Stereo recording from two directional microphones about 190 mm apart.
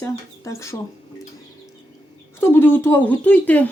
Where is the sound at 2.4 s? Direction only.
10° left (ahead or behind).